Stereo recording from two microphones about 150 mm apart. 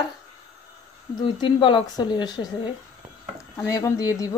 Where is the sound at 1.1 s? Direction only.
30° left (ahead or behind).